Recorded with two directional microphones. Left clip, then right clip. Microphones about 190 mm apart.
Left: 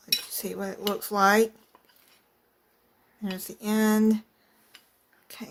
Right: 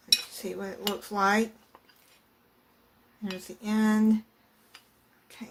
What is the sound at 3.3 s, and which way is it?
Speech, 50° left (ahead or behind).